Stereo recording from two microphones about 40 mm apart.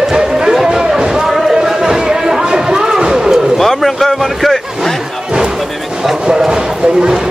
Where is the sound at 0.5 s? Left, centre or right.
Centre.